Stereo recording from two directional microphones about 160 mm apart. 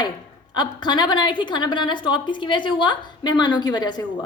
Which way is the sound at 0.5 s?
30° left (ahead or behind).